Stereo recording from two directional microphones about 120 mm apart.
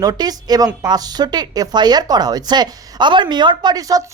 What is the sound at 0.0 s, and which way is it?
Speech, 30° right (ahead or behind).